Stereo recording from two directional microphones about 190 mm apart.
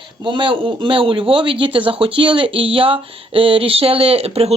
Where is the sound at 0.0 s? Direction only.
25° right (ahead or behind).